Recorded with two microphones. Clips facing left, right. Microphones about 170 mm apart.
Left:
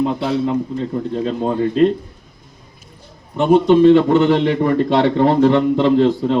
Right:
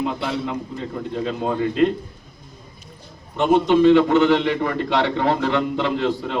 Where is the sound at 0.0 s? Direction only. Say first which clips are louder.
Left 6 dB; 35° left (ahead or behind).